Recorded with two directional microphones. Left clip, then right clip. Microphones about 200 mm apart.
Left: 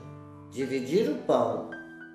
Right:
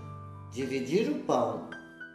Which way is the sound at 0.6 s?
25° right (ahead or behind).